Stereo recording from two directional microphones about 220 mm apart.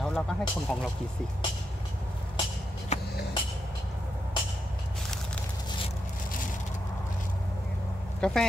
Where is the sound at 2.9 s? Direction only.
30° left (ahead or behind).